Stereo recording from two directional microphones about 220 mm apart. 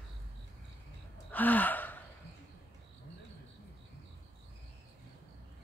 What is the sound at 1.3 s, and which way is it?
Gasp, 5° left (ahead or behind).